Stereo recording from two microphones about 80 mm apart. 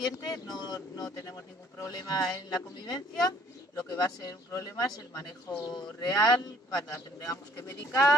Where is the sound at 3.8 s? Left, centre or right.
Left.